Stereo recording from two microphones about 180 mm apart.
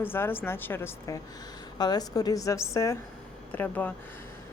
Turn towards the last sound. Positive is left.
turn(degrees=10)  # may be behind; listen again after turning